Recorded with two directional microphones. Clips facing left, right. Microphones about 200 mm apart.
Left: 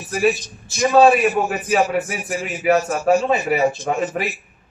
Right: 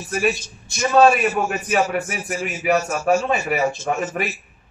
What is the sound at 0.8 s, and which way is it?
A man's voice, 15° left (ahead or behind).